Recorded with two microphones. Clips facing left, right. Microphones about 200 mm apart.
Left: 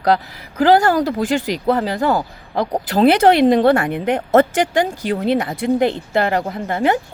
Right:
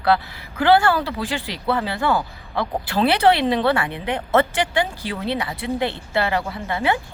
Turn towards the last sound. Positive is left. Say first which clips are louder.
# left 5 dB
turn(degrees=45)  # may be behind; listen again after turning